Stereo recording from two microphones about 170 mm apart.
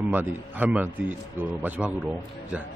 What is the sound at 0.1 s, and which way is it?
A man's voice, 10° right (ahead or behind).